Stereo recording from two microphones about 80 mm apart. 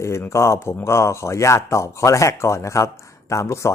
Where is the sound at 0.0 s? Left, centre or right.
Left.